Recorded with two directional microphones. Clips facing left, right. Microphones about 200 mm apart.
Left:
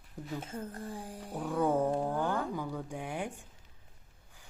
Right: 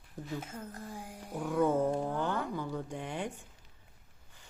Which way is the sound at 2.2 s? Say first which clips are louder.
Left 1 dB; 10° left (ahead or behind).